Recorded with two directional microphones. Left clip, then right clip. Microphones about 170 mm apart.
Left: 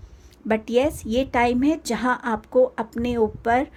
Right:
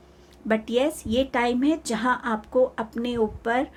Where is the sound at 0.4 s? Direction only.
30° left (ahead or behind).